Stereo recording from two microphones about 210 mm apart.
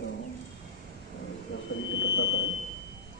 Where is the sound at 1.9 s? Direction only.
60° left (ahead or behind).